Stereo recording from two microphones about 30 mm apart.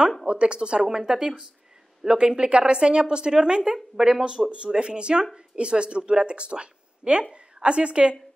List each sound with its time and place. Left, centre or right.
0.3 s speech: right
0.8 s speech: centre
2.1 s speech: right
3.7 s speech: centre
4.6 s speech: right